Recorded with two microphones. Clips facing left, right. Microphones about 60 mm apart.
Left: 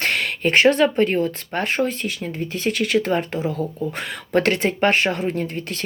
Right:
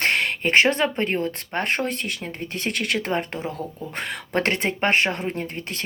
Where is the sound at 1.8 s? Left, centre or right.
Right.